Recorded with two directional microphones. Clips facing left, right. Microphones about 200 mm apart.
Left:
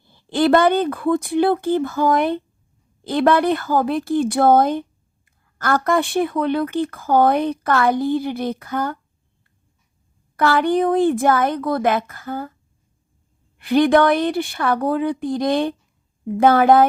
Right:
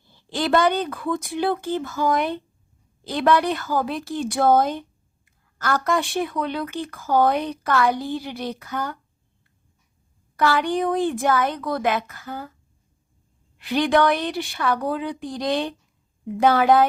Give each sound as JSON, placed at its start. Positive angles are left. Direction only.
{"t": 0.1, "sound": "a woman's voice", "side_deg": 55}
{"t": 10.3, "sound": "a woman's voice", "side_deg": 55}
{"t": 13.6, "sound": "a woman's voice", "side_deg": 50}